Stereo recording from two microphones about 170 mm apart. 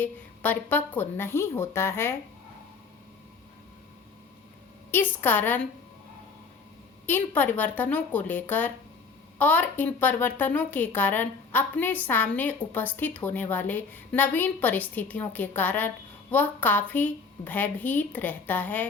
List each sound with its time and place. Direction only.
0.0 s speech: 10° left (ahead or behind)
4.9 s speech: 10° left (ahead or behind)
7.1 s speech: 10° left (ahead or behind)